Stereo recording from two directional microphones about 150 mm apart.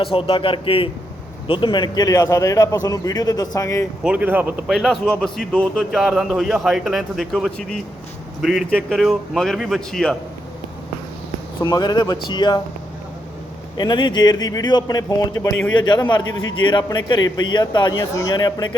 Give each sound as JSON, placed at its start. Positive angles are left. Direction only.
{"t": 0.0, "sound": "a man's voice", "side_deg": 35}
{"t": 4.0, "sound": "a man's voice", "side_deg": -10}
{"t": 11.6, "sound": "a man's voice", "side_deg": 30}
{"t": 13.7, "sound": "a man's voice", "side_deg": 30}